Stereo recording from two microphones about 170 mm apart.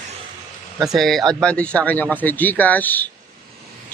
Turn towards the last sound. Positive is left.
turn(degrees=10)  # may be behind; listen again after turning